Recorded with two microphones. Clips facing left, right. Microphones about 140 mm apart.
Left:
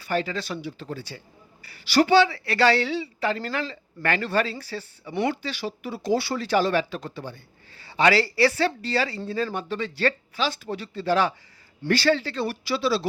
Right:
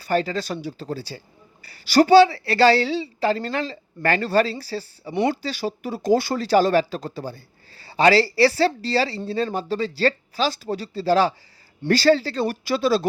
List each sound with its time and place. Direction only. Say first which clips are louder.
0.0 s speech: right 4 dB; 40° right (ahead or behind)